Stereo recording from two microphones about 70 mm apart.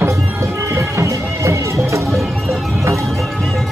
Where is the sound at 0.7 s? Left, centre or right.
Right.